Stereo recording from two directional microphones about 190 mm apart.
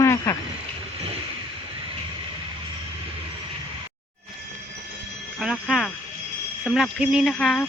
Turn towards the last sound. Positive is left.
turn(degrees=0)  # may be behind; listen again after turning